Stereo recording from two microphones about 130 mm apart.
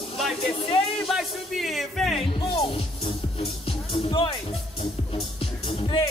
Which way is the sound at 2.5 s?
45° left (ahead or behind).